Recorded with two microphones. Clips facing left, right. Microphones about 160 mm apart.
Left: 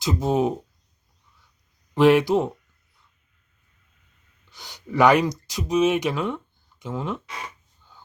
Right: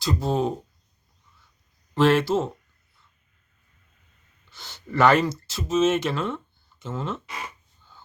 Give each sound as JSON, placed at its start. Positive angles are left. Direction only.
{"t": 0.0, "sound": "speech", "side_deg": 20}
{"t": 2.0, "sound": "speech", "side_deg": 15}
{"t": 4.5, "sound": "speech", "side_deg": 15}